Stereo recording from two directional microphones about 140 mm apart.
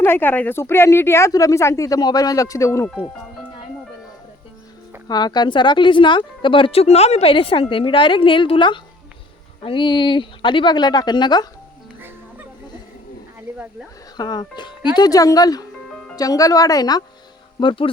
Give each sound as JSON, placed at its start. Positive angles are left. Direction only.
{"t": 0.0, "sound": "speech", "side_deg": 15}
{"t": 5.0, "sound": "speech", "side_deg": 30}
{"t": 14.2, "sound": "speech", "side_deg": 30}
{"t": 17.6, "sound": "speech", "side_deg": 35}